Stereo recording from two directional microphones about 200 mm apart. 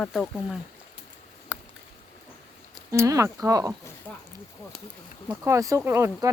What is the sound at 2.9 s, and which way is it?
Speech, 15° right (ahead or behind).